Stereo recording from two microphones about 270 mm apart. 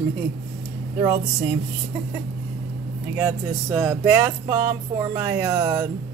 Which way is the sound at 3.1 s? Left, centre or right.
Centre.